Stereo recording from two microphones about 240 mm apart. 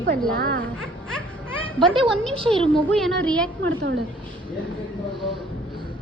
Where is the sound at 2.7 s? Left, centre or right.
Centre.